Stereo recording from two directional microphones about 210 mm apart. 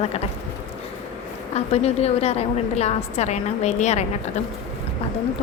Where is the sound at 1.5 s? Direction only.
30° left (ahead or behind).